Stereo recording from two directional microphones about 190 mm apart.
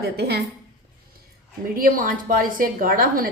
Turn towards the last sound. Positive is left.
turn(degrees=-50)  # may be behind; listen again after turning